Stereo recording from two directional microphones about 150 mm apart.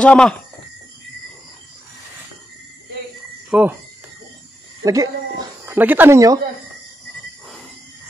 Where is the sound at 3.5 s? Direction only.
10° right (ahead or behind).